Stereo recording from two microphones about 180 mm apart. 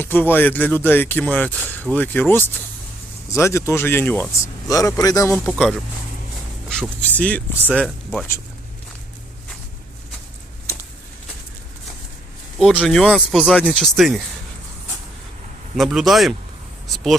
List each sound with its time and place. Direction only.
0.0 s a man's voice: 10° left (ahead or behind)
5.5 s speech: 5° left (ahead or behind)
12.5 s speech: centre (ahead or behind)
15.8 s speech: centre (ahead or behind)